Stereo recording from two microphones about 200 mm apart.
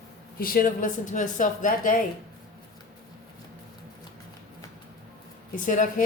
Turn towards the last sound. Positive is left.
turn(degrees=40)  # may be behind; listen again after turning